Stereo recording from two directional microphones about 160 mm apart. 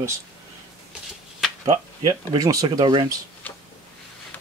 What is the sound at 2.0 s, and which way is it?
Speech, 20° right (ahead or behind).